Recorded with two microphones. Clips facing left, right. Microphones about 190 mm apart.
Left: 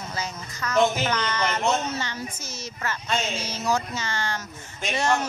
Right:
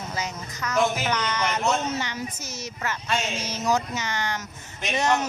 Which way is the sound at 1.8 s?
15° right (ahead or behind).